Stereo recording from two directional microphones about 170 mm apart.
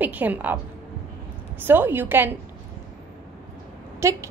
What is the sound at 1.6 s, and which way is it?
Speech, 10° right (ahead or behind).